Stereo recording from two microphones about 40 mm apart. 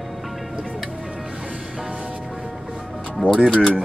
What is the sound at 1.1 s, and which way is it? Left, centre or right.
Vehicle, centre.